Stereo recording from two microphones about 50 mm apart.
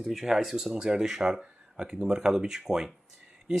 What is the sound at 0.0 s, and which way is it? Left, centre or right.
Speech, centre.